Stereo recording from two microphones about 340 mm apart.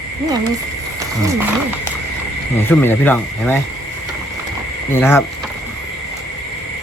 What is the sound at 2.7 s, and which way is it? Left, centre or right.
Speech, centre.